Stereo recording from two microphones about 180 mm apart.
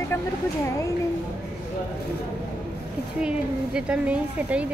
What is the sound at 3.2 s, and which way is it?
A woman's voice, 5° right (ahead or behind).